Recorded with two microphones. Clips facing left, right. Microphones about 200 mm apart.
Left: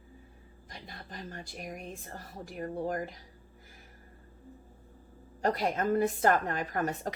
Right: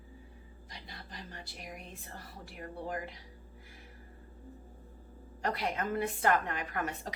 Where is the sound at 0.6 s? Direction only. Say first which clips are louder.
Left 4 dB; 50° left (ahead or behind).